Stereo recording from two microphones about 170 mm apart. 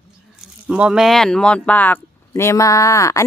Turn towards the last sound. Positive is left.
turn(degrees=20)  # may be behind; listen again after turning